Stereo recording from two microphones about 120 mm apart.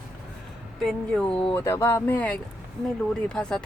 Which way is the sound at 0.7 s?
5° left (ahead or behind).